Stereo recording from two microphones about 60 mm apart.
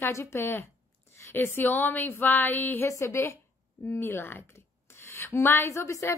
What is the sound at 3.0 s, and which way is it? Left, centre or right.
A woman's voice, left.